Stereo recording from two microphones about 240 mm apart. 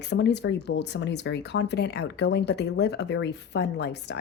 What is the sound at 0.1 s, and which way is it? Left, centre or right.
Speech, left.